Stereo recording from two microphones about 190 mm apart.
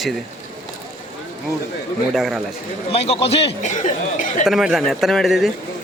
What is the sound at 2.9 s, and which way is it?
Speech, 30° left (ahead or behind).